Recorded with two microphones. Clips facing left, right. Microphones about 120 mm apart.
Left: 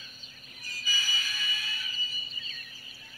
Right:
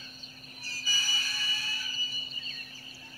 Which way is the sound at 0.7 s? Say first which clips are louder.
Left 2 dB; 35° right (ahead or behind).